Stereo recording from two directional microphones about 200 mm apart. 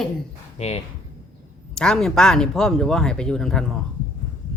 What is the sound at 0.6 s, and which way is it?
Speech, 35° left (ahead or behind).